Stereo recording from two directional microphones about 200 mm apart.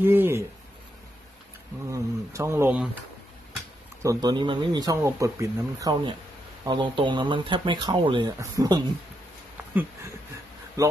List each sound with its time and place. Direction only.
0.0 s speech: 10° right (ahead or behind)
1.9 s speech: 15° right (ahead or behind)
4.0 s speech: 20° right (ahead or behind)
10.8 s speech: 15° right (ahead or behind)